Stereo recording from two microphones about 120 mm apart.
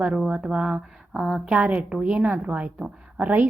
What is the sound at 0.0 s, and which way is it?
A woman's voice, 5° right (ahead or behind).